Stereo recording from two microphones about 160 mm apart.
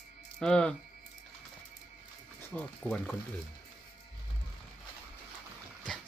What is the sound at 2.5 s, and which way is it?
Speech, 10° left (ahead or behind).